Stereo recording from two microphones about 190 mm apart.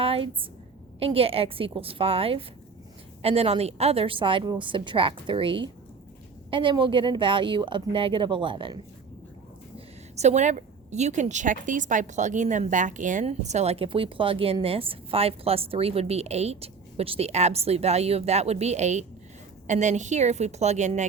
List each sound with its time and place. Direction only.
0.0 s a woman's voice: 30° right (ahead or behind)
9.7 s a woman's voice: 35° right (ahead or behind)